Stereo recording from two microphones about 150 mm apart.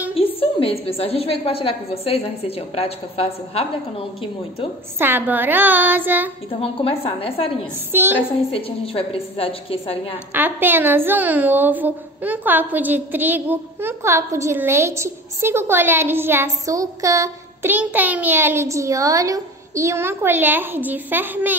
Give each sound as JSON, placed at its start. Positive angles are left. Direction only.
{"t": 0.1, "sound": "a woman's voice", "side_deg": 40}
{"t": 4.9, "sound": "a woman's voice", "side_deg": -15}
{"t": 6.6, "sound": "a woman's voice", "side_deg": 40}
{"t": 7.9, "sound": "a woman's voice", "side_deg": -15}
{"t": 8.5, "sound": "a woman's voice", "side_deg": 40}
{"t": 10.3, "sound": "a woman's voice", "side_deg": -15}